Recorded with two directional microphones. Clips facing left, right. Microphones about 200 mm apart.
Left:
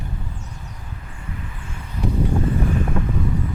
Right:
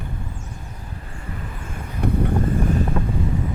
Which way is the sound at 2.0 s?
55° right (ahead or behind).